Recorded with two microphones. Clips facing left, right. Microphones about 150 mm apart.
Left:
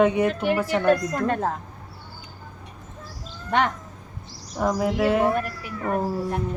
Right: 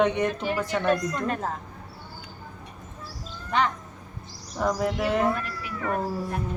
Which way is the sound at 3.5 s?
70° left (ahead or behind).